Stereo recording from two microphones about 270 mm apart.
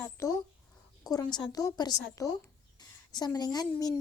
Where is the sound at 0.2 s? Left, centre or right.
Centre.